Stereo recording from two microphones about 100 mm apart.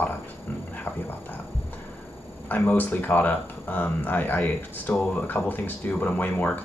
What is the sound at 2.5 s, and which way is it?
Speech, 15° left (ahead or behind).